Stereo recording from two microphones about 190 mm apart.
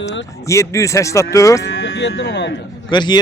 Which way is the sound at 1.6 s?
90° left.